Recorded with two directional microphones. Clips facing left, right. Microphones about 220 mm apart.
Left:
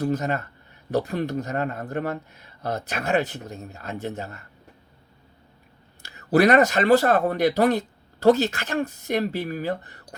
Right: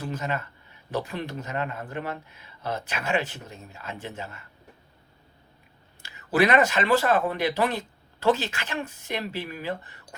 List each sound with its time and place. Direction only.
0.0 s speech: 40° left (ahead or behind)
6.1 s speech: 40° left (ahead or behind)